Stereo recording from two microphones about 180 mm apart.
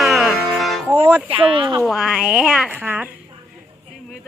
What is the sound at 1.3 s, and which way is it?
Speech, 30° right (ahead or behind).